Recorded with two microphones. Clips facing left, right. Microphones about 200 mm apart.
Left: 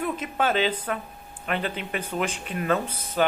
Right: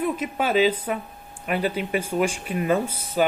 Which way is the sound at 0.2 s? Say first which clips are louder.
Right 4 dB; 10° right (ahead or behind).